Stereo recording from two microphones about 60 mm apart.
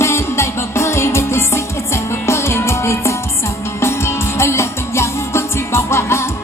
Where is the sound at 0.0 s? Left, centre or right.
Left.